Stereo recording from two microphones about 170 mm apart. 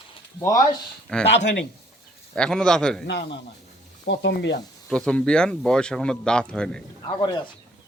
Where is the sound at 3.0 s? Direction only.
85° left.